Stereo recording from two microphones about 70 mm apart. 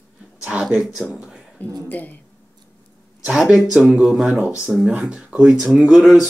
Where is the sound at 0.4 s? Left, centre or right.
Centre.